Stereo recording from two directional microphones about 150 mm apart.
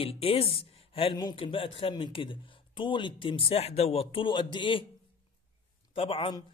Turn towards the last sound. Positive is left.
turn(degrees=35)  # may be behind; listen again after turning